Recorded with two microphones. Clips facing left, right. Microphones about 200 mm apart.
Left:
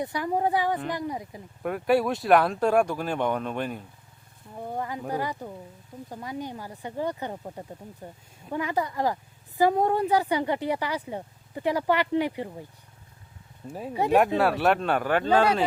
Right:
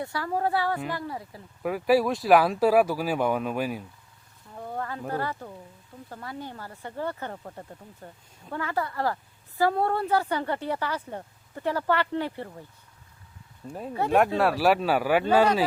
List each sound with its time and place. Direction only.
0.0 s speech: 15° left (ahead or behind)
1.6 s speech: centre (ahead or behind)
4.5 s speech: 15° left (ahead or behind)
13.7 s speech: 5° left (ahead or behind)